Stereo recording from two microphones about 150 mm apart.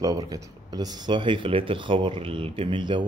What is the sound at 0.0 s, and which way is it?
Speech, 25° right (ahead or behind).